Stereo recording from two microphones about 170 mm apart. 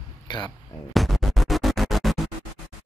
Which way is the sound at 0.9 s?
Centre (ahead or behind).